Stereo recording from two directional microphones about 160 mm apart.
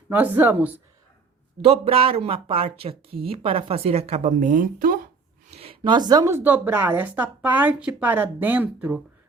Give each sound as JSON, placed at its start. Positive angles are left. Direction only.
{"t": 0.1, "sound": "a woman's voice", "side_deg": -10}
{"t": 1.6, "sound": "a woman's voice", "side_deg": -40}
{"t": 5.5, "sound": "a woman's voice", "side_deg": -40}